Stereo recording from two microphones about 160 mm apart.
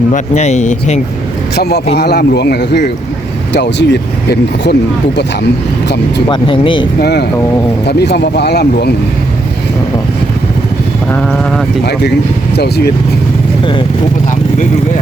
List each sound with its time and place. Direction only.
0.1 s speech: 45° left (ahead or behind)
1.5 s speech: 90° left
6.2 s speech: 30° left (ahead or behind)
7.0 s speech: 90° left
11.1 s sheep: 10° left (ahead or behind)
12.5 s speech: 90° left